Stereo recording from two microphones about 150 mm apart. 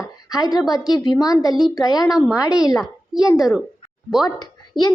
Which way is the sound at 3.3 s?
Centre (ahead or behind).